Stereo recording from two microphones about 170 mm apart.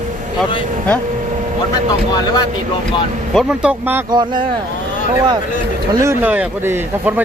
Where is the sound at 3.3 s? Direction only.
5° right (ahead or behind).